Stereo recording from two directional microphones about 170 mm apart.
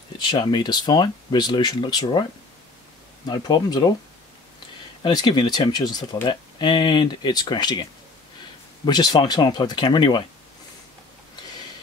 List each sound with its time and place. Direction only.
0.3 s speech: 25° left (ahead or behind)
3.3 s speech: 25° left (ahead or behind)
5.0 s speech: 25° left (ahead or behind)
8.8 s speech: 25° left (ahead or behind)